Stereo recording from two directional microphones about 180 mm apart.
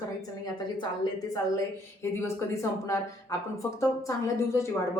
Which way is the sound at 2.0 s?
15° left (ahead or behind).